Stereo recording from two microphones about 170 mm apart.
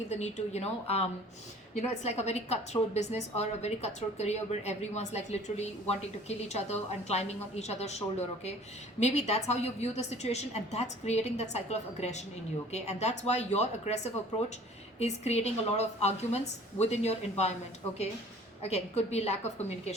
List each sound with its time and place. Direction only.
0.1 s a woman's voice: 40° left (ahead or behind)